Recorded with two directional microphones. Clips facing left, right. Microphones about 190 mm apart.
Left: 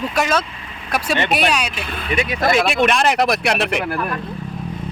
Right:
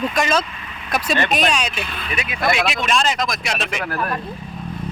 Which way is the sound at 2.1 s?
30° left (ahead or behind).